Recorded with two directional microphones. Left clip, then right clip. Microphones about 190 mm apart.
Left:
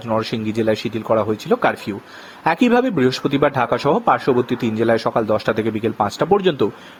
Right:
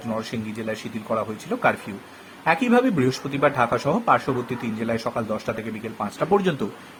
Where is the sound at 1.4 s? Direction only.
45° left (ahead or behind).